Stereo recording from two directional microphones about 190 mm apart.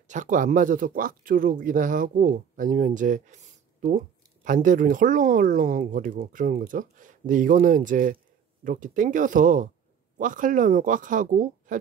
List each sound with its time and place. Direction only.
0.1 s speech: 40° right (ahead or behind)
4.5 s speech: 45° right (ahead or behind)